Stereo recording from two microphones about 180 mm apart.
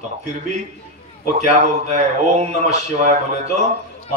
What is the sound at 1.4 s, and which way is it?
Speech, 40° right (ahead or behind).